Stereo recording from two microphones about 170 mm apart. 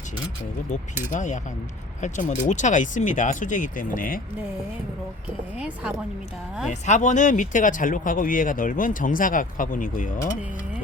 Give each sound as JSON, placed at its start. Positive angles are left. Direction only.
{"t": 1.1, "sound": "speech", "side_deg": 45}
{"t": 5.5, "sound": "speech", "side_deg": -5}
{"t": 6.7, "sound": "speech", "side_deg": 45}